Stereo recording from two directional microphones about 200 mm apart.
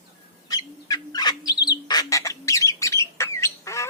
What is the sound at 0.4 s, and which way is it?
Bird, 20° left (ahead or behind).